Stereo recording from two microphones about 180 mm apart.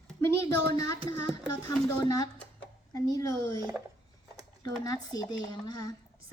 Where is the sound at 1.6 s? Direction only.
20° left (ahead or behind).